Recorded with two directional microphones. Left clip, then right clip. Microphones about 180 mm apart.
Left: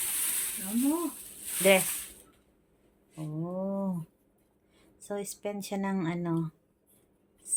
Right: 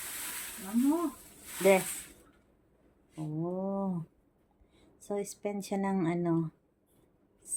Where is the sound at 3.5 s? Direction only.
Centre (ahead or behind).